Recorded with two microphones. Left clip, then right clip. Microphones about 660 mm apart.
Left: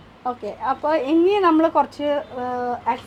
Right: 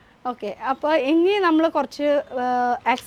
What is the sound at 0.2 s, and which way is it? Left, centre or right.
A woman's voice, right.